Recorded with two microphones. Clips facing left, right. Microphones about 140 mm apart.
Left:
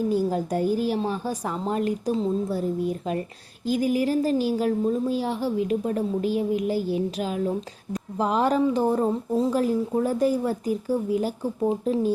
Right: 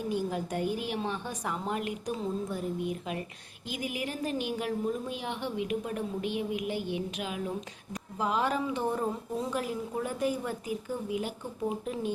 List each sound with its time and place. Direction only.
0.1 s speech: 35° left (ahead or behind)